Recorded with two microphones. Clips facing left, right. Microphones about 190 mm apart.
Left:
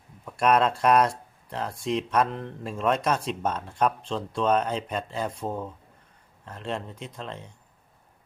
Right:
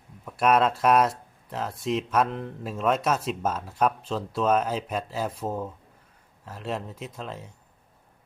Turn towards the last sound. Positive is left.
turn(degrees=-5)  # may be behind; listen again after turning